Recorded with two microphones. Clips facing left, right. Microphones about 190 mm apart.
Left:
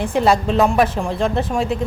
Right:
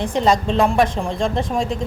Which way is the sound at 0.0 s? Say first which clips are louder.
Left 1 dB; 10° left (ahead or behind).